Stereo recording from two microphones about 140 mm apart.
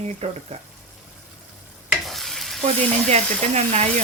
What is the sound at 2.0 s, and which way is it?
Stir, centre (ahead or behind).